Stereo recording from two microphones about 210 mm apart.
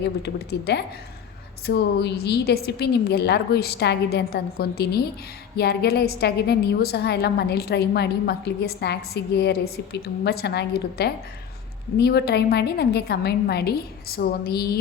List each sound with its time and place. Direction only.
0.0 s a woman's voice: 50° left (ahead or behind)